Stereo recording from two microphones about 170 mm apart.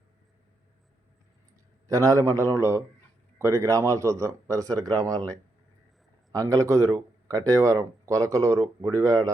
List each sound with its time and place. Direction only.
1.9 s a man's voice: 20° right (ahead or behind)